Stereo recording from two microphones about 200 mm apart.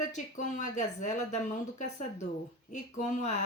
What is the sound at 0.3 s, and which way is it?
Speech, 40° left (ahead or behind).